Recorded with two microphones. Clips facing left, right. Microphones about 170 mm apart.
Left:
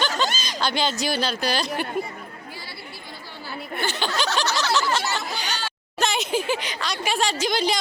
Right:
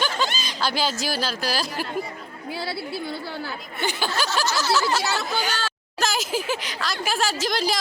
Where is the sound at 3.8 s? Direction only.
5° right (ahead or behind).